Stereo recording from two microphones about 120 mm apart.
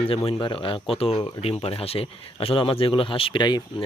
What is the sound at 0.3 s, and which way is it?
Speech, 45° left (ahead or behind).